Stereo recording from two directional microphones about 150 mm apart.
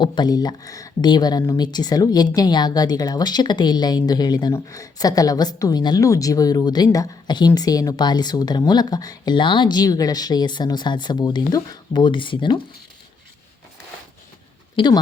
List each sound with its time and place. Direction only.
0.0 s speech: 30° left (ahead or behind)
14.8 s a woman's voice: 35° left (ahead or behind)